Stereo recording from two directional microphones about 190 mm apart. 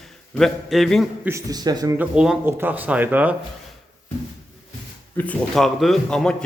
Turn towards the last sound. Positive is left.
turn(degrees=5)  # may be behind; listen again after turning